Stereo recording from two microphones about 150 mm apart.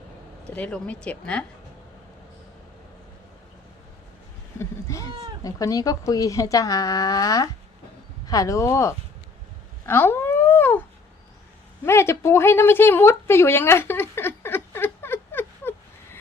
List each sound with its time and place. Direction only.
0.5 s speech: 10° left (ahead or behind)
4.5 s speech: 20° left (ahead or behind)
9.8 s cat: 15° left (ahead or behind)
11.9 s a woman's voice: 15° left (ahead or behind)